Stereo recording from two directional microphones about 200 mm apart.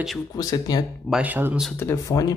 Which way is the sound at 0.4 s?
20° left (ahead or behind).